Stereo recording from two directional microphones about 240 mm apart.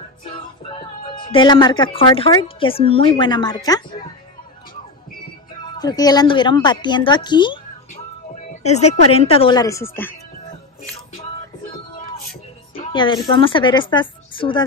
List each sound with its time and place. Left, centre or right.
1.3 s a woman's voice: centre
5.6 s a woman's voice: centre
8.6 s a woman's voice: left; by 10.1 s centre
12.7 s a woman's voice: centre